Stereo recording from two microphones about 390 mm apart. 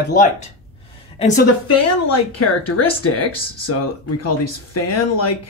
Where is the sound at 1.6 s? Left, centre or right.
Left.